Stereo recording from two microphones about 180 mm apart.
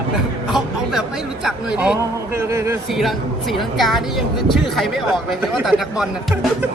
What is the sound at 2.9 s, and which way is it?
A woman's voice, centre (ahead or behind).